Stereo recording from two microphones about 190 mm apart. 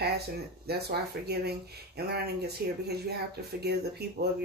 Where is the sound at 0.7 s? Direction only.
60° right (ahead or behind).